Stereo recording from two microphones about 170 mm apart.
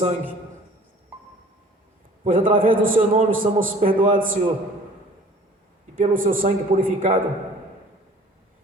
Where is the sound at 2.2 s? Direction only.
50° right (ahead or behind).